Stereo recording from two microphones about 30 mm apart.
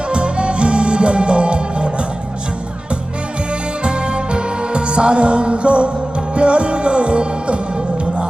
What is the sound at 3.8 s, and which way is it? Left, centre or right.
Music, right.